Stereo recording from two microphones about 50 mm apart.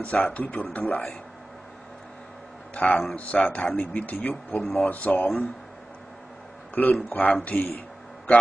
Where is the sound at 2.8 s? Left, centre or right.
Left.